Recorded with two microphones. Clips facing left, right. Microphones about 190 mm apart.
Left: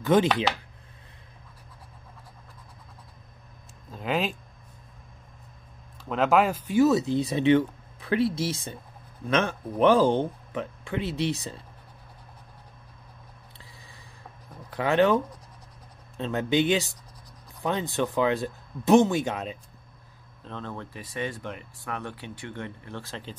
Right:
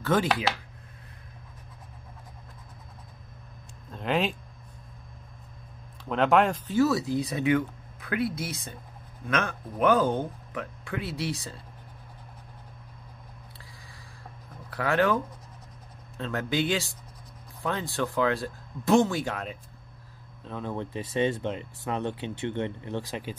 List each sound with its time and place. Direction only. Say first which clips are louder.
0.0 s speech: left 4 dB; 20° left (ahead or behind)
3.9 s speech: right 1 dB; centre (ahead or behind)
6.0 s speech: even; centre (ahead or behind)
6.7 s speech: left 6 dB; 20° left (ahead or behind)
14.7 s speech: left 3 dB; 20° left (ahead or behind)
16.2 s speech: left 4 dB; 20° left (ahead or behind)
20.4 s speech: right 4 dB; 10° right (ahead or behind)